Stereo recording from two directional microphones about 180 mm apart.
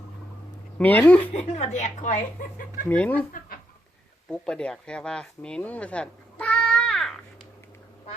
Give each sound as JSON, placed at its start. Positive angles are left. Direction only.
{"t": 0.8, "sound": "speech", "side_deg": 10}
{"t": 1.3, "sound": "speech", "side_deg": 40}
{"t": 2.9, "sound": "speech", "side_deg": 5}
{"t": 4.3, "sound": "speech", "side_deg": 5}